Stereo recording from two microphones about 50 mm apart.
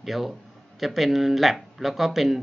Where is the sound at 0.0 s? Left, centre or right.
Centre.